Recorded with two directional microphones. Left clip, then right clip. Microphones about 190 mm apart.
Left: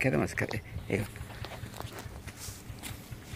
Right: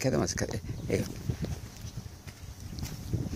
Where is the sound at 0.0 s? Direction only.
20° right (ahead or behind).